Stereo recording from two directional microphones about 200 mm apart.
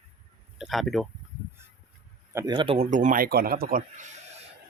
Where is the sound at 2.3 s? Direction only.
20° right (ahead or behind); by 4.0 s 40° right (ahead or behind).